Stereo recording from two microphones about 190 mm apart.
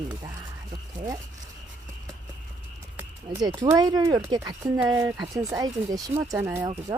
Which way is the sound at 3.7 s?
20° right (ahead or behind).